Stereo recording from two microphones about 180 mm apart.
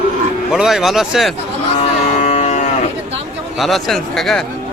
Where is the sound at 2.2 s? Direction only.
35° left (ahead or behind).